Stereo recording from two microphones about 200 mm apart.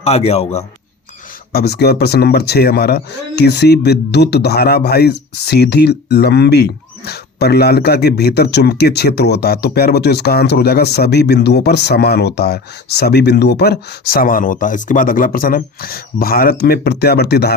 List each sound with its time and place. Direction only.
0.0 s a man's voice: 30° left (ahead or behind)
1.5 s speech: 55° left (ahead or behind)